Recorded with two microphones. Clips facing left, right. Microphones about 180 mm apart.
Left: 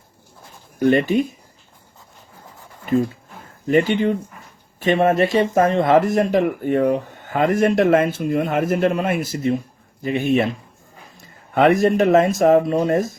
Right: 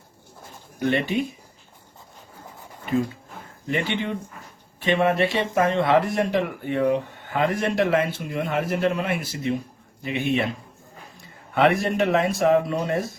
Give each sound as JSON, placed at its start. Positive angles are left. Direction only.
{"t": 0.8, "sound": "speech", "side_deg": 45}
{"t": 3.7, "sound": "speech", "side_deg": 40}
{"t": 11.5, "sound": "speech", "side_deg": 45}